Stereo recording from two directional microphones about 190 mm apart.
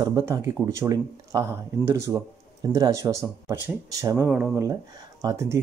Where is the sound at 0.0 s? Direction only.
15° right (ahead or behind).